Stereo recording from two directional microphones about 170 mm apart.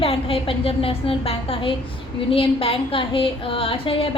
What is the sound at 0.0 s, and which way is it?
A woman's voice, 35° left (ahead or behind).